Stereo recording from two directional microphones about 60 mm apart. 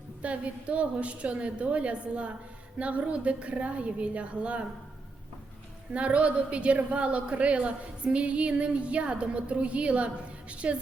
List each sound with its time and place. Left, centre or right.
0.2 s a woman's voice: right
5.9 s a woman's voice: right